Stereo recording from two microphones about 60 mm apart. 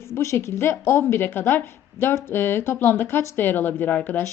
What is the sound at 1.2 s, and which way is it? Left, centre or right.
A woman's voice, left.